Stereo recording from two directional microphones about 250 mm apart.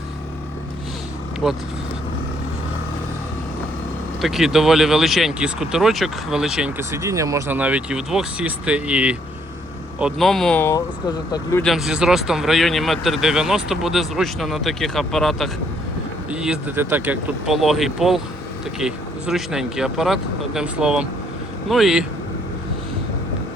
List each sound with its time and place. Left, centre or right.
1.4 s speech: centre
4.2 s speech: centre
11.6 s speech: centre